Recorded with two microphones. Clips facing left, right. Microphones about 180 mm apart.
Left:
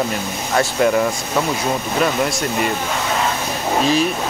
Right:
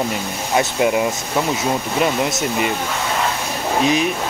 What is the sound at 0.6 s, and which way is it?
Speech, 15° right (ahead or behind).